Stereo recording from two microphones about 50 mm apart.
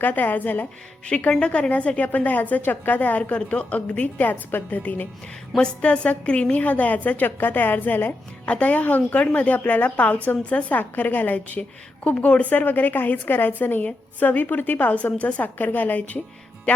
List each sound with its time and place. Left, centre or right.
0.0 s a woman's voice: left
1.4 s a woman's voice: left
5.5 s a woman's voice: left
8.4 s a woman's voice: left